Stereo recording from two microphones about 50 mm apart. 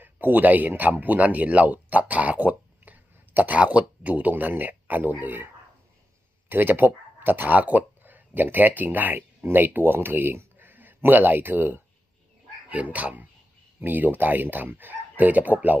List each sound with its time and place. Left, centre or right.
0.0 s speech: right
6.5 s speech: right
12.6 s speech: right